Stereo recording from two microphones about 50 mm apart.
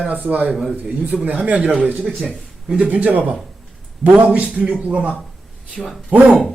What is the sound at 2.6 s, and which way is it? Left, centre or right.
Speech, centre.